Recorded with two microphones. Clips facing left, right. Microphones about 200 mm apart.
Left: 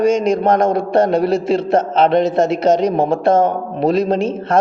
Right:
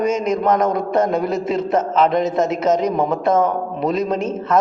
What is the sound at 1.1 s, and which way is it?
A man's voice, 80° left.